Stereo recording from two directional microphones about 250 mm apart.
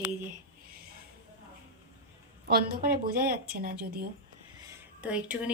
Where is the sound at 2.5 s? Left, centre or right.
Right.